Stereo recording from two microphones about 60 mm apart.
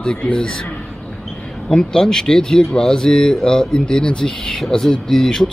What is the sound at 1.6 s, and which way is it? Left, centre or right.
Speech, centre.